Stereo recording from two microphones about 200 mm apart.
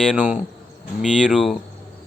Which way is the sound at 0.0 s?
5° right (ahead or behind).